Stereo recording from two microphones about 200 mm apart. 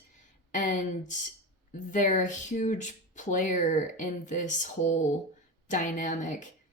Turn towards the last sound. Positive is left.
turn(degrees=40)  # may be behind; listen again after turning